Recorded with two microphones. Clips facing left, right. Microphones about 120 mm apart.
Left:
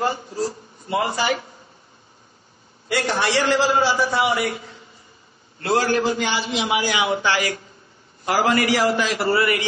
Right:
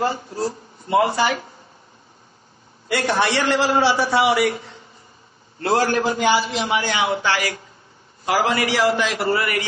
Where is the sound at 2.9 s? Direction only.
55° right (ahead or behind).